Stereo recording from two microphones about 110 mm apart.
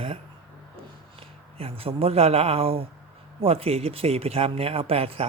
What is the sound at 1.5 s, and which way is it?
Speech, 60° right (ahead or behind).